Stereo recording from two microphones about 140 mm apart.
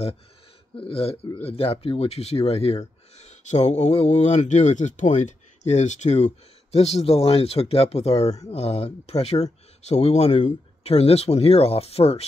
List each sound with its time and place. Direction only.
0.7 s speech: 40° left (ahead or behind)